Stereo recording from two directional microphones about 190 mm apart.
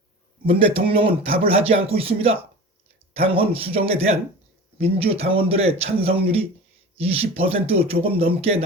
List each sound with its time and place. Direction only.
0.4 s a man's voice: 30° right (ahead or behind)